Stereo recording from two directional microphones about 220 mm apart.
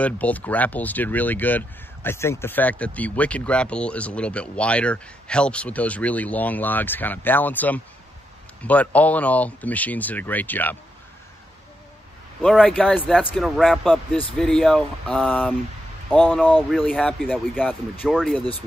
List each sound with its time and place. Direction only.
0.0 s speech: 5° left (ahead or behind)
12.4 s speech: centre (ahead or behind)